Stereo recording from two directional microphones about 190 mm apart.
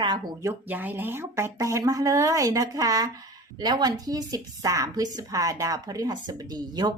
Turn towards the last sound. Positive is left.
turn(degrees=-20)  # may be behind; listen again after turning